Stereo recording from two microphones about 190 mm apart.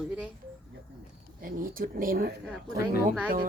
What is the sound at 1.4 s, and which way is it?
Speech, 50° right (ahead or behind).